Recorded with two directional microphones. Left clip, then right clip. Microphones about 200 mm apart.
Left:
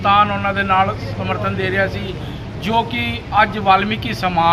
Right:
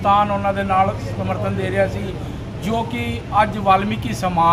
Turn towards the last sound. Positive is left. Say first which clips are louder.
# left 1 dB
turn(degrees=-5)  # may be behind; listen again after turning